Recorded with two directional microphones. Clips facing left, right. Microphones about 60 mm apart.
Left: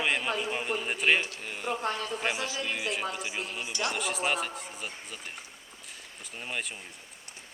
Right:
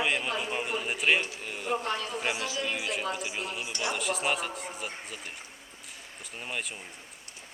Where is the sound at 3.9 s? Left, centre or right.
Centre.